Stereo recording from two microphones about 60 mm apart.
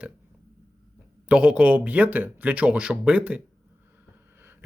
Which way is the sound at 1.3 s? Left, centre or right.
Right.